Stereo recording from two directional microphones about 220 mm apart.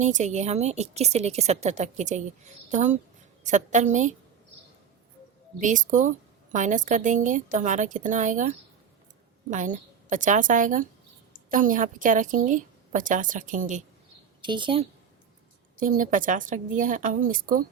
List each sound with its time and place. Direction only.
0.0 s a woman's voice: 30° right (ahead or behind)
5.5 s a woman's voice: 35° right (ahead or behind)
14.4 s a woman's voice: 20° right (ahead or behind)
15.8 s a woman's voice: 35° right (ahead or behind)